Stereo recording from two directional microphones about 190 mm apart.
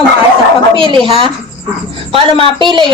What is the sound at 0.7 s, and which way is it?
Speech, 25° right (ahead or behind).